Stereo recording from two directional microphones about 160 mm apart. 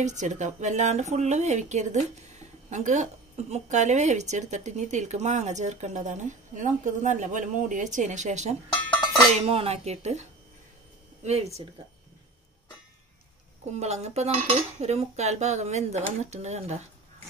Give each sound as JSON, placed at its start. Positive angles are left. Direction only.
{"t": 0.0, "sound": "speech", "side_deg": -45}
{"t": 8.9, "sound": "chink", "side_deg": 0}
{"t": 9.5, "sound": "speech", "side_deg": -40}
{"t": 11.2, "sound": "speech", "side_deg": -40}
{"t": 13.7, "sound": "speech", "side_deg": -45}